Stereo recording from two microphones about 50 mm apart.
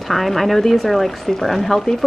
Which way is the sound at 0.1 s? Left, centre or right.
Centre.